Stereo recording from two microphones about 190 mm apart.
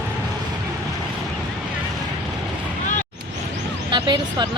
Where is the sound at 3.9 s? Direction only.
25° right (ahead or behind).